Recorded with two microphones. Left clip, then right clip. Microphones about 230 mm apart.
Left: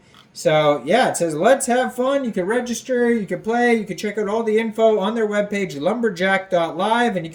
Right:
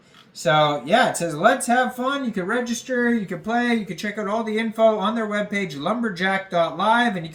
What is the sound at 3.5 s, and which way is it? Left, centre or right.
Speech, right.